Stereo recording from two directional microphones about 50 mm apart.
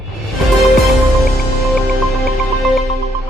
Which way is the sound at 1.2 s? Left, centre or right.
Centre.